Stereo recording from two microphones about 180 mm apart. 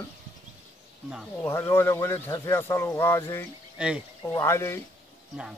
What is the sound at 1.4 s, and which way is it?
Speech, 15° left (ahead or behind).